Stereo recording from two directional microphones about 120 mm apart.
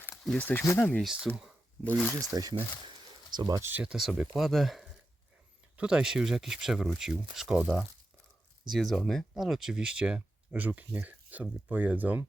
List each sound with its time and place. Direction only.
0.3 s speech: 15° left (ahead or behind)
1.0 s speech: 5° right (ahead or behind)
2.0 s speech: 10° left (ahead or behind)
2.3 s speech: 30° right (ahead or behind)
3.7 s speech: 10° right (ahead or behind)